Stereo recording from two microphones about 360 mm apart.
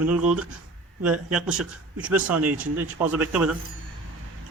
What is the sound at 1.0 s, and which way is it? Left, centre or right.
Speech, centre.